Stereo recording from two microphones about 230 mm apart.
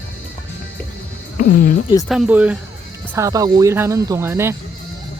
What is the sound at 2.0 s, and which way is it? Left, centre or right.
Speech, centre.